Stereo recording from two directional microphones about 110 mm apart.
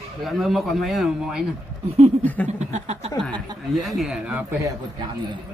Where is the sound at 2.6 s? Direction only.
90° right.